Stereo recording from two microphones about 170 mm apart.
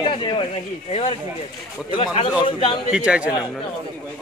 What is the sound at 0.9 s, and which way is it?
Speech, 35° left (ahead or behind).